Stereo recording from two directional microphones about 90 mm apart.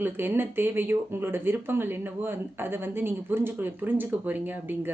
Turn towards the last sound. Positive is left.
turn(degrees=-20)  # may be behind; listen again after turning